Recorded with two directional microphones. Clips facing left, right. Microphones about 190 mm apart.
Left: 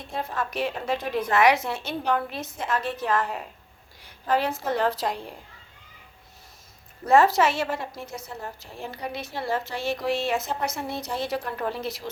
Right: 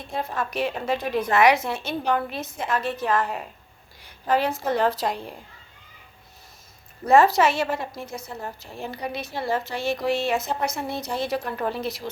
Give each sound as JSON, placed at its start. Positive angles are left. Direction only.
{"t": 0.1, "sound": "a woman's voice", "side_deg": -15}
{"t": 7.0, "sound": "a woman's voice", "side_deg": -15}